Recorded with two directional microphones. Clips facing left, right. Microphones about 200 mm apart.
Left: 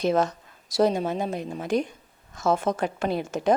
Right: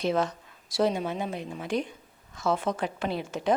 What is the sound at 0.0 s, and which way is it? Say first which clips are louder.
A woman's voice: left 4 dB; 45° left (ahead or behind).